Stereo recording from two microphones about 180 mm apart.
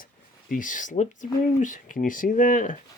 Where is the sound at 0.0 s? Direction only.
50° left (ahead or behind).